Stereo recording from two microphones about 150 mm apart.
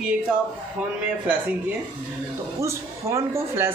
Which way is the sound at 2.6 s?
20° right (ahead or behind).